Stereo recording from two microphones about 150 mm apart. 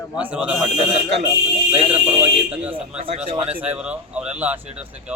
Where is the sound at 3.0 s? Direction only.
45° right (ahead or behind).